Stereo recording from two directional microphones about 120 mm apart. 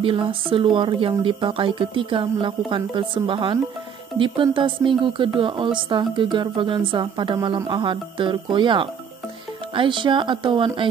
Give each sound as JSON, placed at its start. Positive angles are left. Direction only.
{"t": 0.0, "sound": "speech", "side_deg": -50}